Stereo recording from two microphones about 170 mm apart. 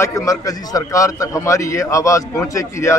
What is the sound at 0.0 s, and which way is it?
A man's voice, 20° left (ahead or behind).